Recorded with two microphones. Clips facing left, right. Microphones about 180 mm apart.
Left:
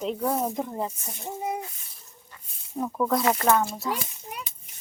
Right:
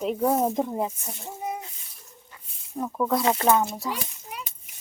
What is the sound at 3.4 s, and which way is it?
Speech, 15° right (ahead or behind).